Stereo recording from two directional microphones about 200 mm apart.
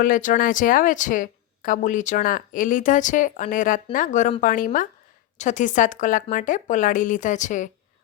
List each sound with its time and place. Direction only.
0.0 s speech: 40° left (ahead or behind)